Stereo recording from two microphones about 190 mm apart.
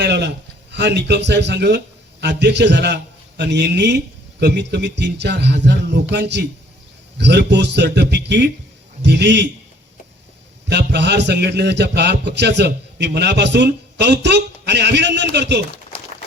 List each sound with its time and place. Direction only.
0.0 s a sound: 65° right (ahead or behind)
0.7 s a man's voice: 65° right (ahead or behind)
10.7 s a man's voice: 65° right (ahead or behind)